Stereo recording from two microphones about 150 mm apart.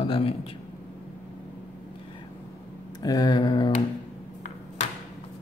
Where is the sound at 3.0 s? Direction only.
25° left (ahead or behind).